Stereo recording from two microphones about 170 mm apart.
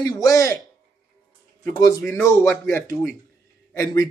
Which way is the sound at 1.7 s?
20° left (ahead or behind).